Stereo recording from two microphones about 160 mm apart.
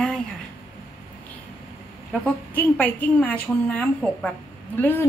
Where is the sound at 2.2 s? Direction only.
10° left (ahead or behind).